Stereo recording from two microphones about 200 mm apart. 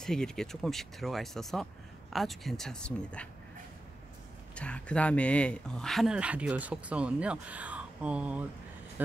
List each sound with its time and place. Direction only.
0.0 s speech: 5° left (ahead or behind)
4.6 s speech: 5° left (ahead or behind)